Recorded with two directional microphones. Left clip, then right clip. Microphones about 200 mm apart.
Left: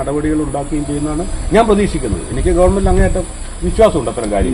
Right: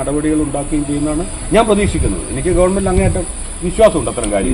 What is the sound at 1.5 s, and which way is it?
A man's voice, centre (ahead or behind).